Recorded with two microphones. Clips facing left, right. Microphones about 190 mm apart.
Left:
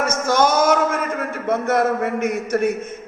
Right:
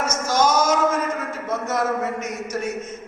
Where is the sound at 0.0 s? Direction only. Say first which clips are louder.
Left 3 dB; 60° left (ahead or behind).